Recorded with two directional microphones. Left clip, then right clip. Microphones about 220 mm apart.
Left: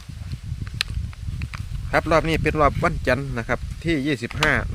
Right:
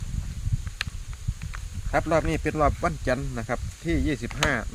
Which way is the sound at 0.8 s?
45° left (ahead or behind).